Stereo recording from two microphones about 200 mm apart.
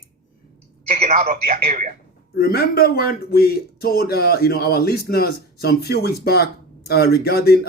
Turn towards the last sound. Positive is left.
turn(degrees=50)  # may be behind; listen again after turning